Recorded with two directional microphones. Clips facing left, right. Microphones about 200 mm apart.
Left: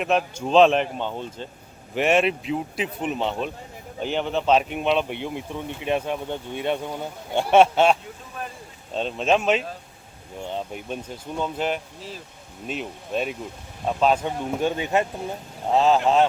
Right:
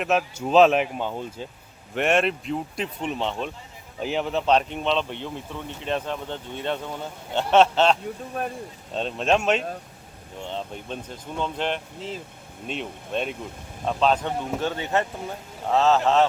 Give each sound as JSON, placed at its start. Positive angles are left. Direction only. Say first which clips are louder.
{"t": 0.0, "sound": "speech", "louder": "left 1 dB", "side_deg": -5}
{"t": 11.9, "sound": "speech", "louder": "right 4 dB", "side_deg": -20}
{"t": 12.6, "sound": "speech", "louder": "left 1 dB", "side_deg": 5}